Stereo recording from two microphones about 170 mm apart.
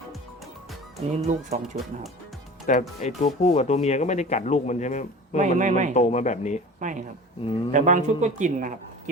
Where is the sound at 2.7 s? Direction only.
45° left (ahead or behind).